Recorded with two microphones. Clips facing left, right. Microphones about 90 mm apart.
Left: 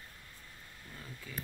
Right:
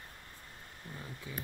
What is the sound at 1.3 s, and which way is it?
Speech, 20° right (ahead or behind).